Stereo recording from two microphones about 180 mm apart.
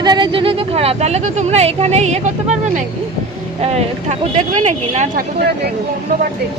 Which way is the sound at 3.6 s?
35° right (ahead or behind).